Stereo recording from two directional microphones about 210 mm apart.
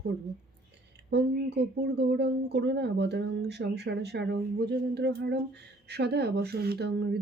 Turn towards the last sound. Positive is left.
turn(degrees=-50)  # may be behind; listen again after turning